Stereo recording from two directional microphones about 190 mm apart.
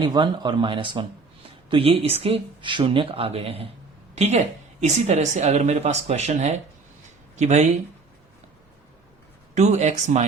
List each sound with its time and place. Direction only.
0.0 s a woman's voice: 25° right (ahead or behind); by 7.7 s 40° right (ahead or behind)
9.6 s a woman's voice: 35° right (ahead or behind)